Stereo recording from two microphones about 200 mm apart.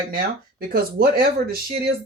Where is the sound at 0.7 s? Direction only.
50° right (ahead or behind).